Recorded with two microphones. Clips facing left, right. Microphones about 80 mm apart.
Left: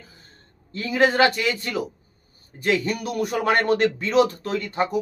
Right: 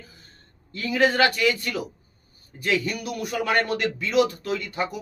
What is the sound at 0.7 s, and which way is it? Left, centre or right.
A man's voice, left.